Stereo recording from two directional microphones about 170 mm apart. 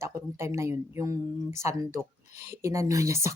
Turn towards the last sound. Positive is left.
turn(degrees=-15)  # may be behind; listen again after turning